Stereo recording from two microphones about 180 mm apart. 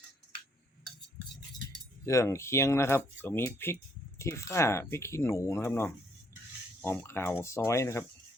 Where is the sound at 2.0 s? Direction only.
15° left (ahead or behind).